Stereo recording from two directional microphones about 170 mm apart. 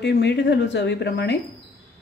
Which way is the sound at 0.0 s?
90° left.